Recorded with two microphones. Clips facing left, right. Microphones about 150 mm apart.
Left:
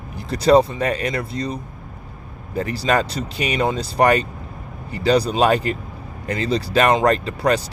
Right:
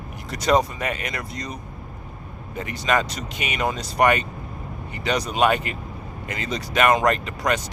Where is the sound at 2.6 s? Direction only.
35° left (ahead or behind).